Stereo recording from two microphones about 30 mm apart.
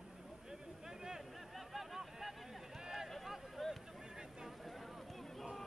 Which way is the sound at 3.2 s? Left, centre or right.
Centre.